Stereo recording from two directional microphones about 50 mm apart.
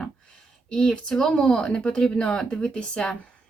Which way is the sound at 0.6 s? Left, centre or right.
Centre.